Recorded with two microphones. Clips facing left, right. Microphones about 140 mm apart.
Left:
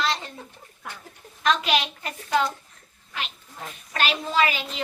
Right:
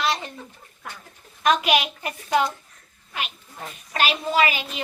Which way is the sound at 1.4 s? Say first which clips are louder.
Right 3 dB; 15° right (ahead or behind).